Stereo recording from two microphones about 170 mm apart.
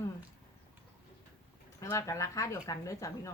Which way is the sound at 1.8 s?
15° left (ahead or behind).